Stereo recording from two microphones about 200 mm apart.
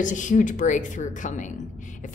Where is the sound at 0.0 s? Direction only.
40° left (ahead or behind).